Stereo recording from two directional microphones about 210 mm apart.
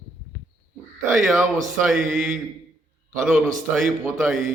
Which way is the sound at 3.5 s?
35° right (ahead or behind).